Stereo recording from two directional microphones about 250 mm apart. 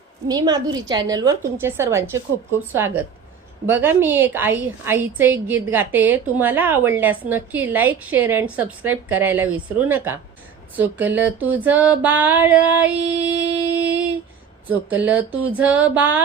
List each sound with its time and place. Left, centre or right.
0.3 s a woman's voice: centre